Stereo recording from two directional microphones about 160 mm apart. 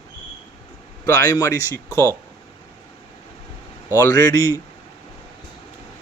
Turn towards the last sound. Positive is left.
turn(degrees=20)  # may be behind; listen again after turning